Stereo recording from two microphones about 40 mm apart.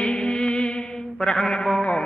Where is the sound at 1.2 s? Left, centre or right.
Centre.